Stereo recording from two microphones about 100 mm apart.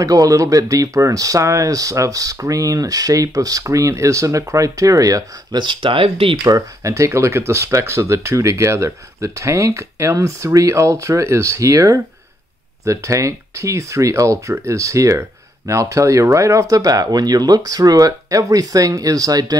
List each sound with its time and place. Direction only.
0.0 s speech: 35° right (ahead or behind)
5.6 s speech: 55° right (ahead or behind)
6.4 s speech: 35° right (ahead or behind)